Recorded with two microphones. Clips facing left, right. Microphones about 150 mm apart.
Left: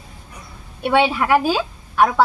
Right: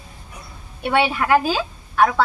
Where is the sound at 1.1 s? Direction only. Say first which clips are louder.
Left 1 dB; 5° left (ahead or behind).